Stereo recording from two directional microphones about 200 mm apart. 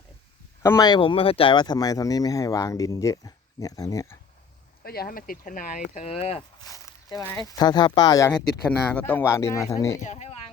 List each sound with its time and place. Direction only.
0.6 s speech: 15° left (ahead or behind)
4.8 s speech: 50° left (ahead or behind); by 6.4 s 30° left (ahead or behind)
6.7 s speech: 15° left (ahead or behind)
8.9 s speech: 10° left (ahead or behind)
10.0 s speech: 35° left (ahead or behind)